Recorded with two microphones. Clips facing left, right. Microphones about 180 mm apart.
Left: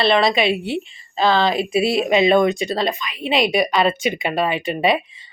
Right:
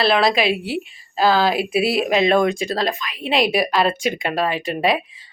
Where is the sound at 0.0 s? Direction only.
Centre (ahead or behind).